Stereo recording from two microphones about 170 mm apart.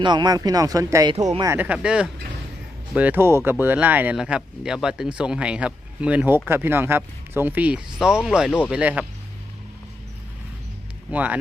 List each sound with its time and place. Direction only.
0.0 s speech: 25° right (ahead or behind); by 9.0 s 10° right (ahead or behind)
11.1 s speech: 10° right (ahead or behind)